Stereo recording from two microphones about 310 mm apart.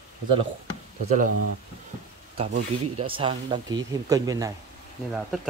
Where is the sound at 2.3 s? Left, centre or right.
Right.